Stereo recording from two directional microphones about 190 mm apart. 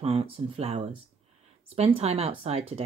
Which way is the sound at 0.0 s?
30° right (ahead or behind).